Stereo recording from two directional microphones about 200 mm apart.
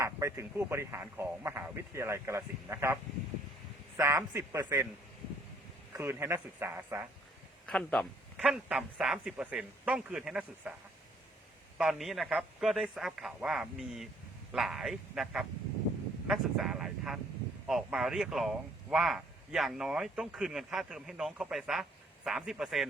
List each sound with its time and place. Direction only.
0.0 s a man's voice: 15° right (ahead or behind)
5.9 s speech: 15° right (ahead or behind)
7.7 s speech: 5° left (ahead or behind)
11.8 s speech: centre (ahead or behind)